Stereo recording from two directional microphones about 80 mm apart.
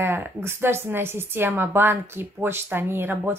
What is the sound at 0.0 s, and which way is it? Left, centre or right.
A woman's voice, right.